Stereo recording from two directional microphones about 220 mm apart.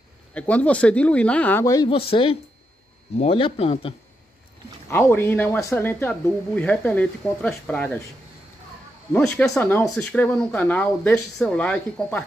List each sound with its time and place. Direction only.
0.3 s speech: 5° left (ahead or behind); by 3.9 s 25° left (ahead or behind)
4.8 s speech: 10° left (ahead or behind)
9.1 s speech: 5° left (ahead or behind)